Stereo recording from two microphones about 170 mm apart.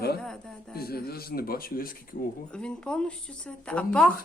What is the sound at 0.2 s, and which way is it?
Speech, 5° left (ahead or behind).